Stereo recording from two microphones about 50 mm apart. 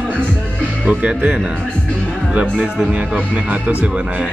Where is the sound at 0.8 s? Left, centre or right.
Right.